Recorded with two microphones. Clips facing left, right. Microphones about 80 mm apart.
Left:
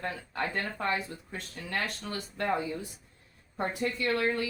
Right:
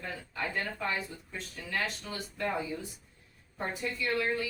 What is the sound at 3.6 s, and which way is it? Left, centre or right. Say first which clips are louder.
Speech: left 4 dB; left.